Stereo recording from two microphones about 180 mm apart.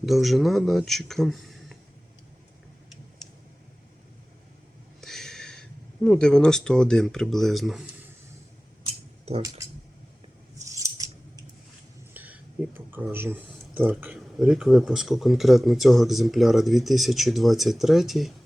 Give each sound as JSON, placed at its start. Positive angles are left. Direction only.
{"t": 0.0, "sound": "speech", "side_deg": 0}
{"t": 4.9, "sound": "speech", "side_deg": 0}
{"t": 10.7, "sound": "scissors", "side_deg": -20}
{"t": 12.1, "sound": "speech", "side_deg": -10}